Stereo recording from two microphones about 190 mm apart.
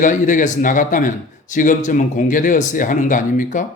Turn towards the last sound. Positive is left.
turn(degrees=45)  # may be behind; listen again after turning